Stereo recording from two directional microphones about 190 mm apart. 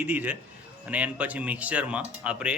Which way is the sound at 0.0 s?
10° right (ahead or behind).